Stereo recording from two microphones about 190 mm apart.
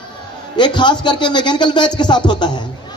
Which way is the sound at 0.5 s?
25° left (ahead or behind).